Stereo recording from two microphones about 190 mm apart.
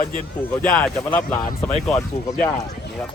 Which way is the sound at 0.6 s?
5° left (ahead or behind).